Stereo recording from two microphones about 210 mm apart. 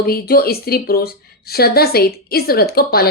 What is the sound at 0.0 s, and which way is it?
A woman's voice, 45° left (ahead or behind).